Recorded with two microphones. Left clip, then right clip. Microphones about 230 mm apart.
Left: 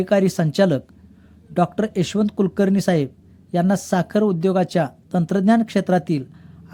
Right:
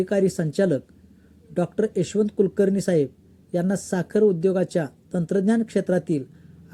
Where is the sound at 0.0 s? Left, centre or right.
Left.